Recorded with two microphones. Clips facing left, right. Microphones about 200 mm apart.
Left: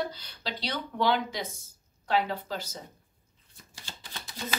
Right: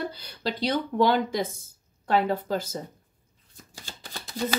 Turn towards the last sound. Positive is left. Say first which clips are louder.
# right 8 dB
turn(degrees=-45)  # may be behind; listen again after turning